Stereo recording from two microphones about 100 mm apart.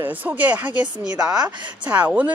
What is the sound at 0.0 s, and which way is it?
Speech, 15° right (ahead or behind).